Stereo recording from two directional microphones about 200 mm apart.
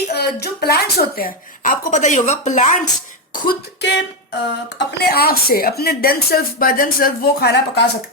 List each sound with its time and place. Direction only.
0.1 s a woman's voice: 55° left (ahead or behind)